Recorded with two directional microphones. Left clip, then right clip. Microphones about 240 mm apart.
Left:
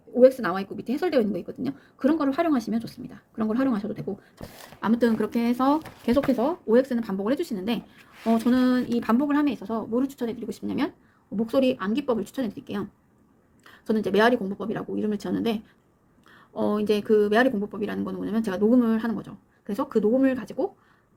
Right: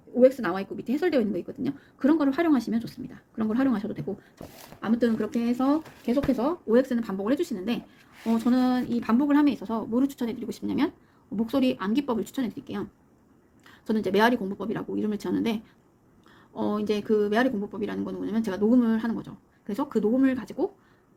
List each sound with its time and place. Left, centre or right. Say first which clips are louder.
0.2 s speech: left 2 dB; centre
4.8 s speech: left 3 dB; centre
6.3 s speech: even; centre